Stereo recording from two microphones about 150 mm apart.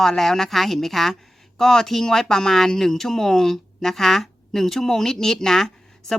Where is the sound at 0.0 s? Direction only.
Centre (ahead or behind).